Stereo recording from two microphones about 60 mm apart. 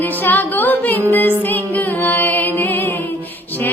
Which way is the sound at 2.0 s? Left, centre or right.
Left.